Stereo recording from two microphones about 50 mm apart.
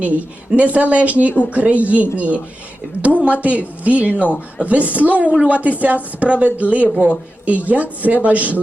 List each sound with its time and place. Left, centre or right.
0.0 s a woman's voice: right